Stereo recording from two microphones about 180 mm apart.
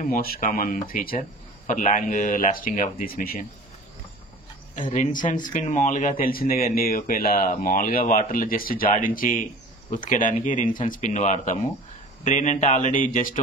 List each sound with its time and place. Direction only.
0.0 s speech: 55° left (ahead or behind)
4.9 s speech: 45° left (ahead or behind)